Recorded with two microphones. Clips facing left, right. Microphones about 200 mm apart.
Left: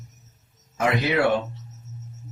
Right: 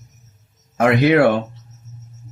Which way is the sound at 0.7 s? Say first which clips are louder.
Right 9 dB; 60° right (ahead or behind).